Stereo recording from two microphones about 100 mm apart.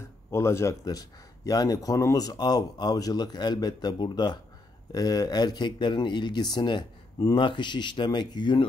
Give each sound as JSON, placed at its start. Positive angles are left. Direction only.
{"t": 0.3, "sound": "speech", "side_deg": 25}